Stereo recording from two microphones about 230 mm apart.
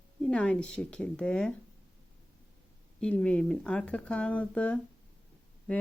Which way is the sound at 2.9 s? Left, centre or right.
Centre.